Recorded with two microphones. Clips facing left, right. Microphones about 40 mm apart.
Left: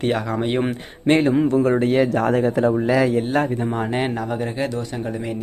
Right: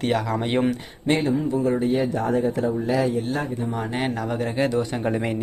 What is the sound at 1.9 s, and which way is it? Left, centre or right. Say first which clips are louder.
Speech: left 4 dB; left.